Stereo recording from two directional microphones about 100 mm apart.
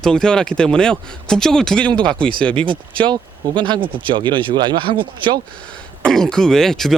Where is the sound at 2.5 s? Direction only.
60° right (ahead or behind).